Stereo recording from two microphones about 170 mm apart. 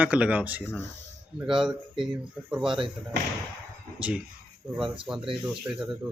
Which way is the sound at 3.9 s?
5° right (ahead or behind).